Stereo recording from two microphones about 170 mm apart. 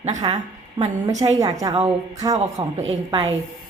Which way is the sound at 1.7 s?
40° right (ahead or behind).